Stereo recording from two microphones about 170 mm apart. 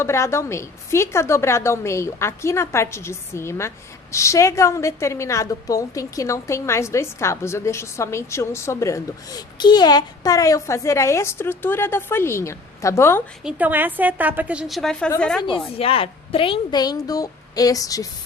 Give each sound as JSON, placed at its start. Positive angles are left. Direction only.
{"t": 0.0, "sound": "a woman's voice", "side_deg": 15}
{"t": 13.4, "sound": "a woman's voice", "side_deg": -10}
{"t": 15.7, "sound": "speech", "side_deg": 35}